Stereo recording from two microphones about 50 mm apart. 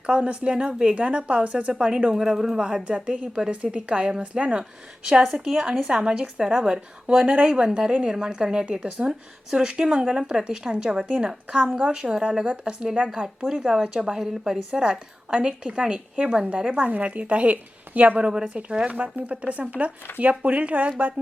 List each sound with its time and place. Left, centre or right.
0.0 s a woman's voice: right
2.1 s a woman's voice: centre; by 4.6 s right
5.2 s a woman's voice: centre
16.7 s a woman's voice: right